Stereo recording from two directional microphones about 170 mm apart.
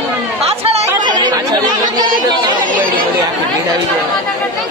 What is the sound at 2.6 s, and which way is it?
Chatter, 55° right (ahead or behind).